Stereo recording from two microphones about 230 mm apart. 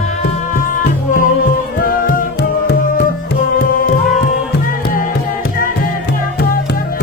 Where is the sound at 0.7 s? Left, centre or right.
Left.